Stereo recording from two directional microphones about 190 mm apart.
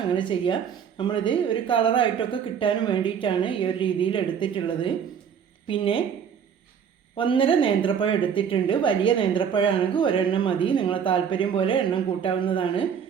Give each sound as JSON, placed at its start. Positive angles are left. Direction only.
{"t": 0.1, "sound": "a woman's voice", "side_deg": 25}
{"t": 7.2, "sound": "a woman's voice", "side_deg": 25}